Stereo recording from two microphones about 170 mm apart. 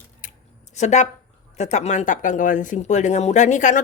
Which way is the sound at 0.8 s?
45° left (ahead or behind).